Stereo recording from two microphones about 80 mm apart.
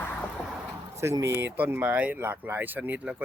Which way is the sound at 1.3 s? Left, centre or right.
Right.